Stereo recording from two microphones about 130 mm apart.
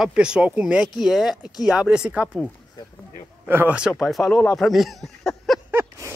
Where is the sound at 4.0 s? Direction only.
Centre (ahead or behind).